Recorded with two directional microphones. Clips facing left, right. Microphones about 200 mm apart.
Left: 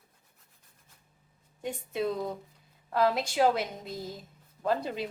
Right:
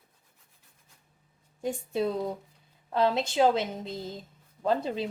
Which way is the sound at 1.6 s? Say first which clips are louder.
Right 3 dB; 35° right (ahead or behind).